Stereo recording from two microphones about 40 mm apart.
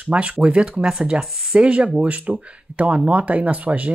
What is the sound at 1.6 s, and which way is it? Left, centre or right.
Speech, right.